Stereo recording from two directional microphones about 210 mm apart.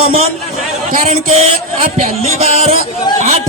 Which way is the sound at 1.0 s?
30° right (ahead or behind).